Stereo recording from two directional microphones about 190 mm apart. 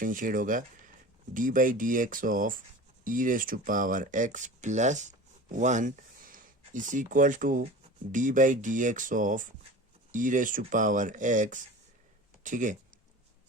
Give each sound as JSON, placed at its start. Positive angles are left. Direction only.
{"t": 0.0, "sound": "speech", "side_deg": -45}